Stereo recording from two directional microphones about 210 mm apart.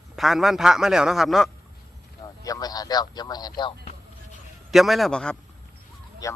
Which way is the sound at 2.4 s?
15° left (ahead or behind).